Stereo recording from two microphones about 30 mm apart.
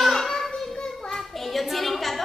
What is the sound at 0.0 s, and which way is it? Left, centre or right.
Child singing, centre.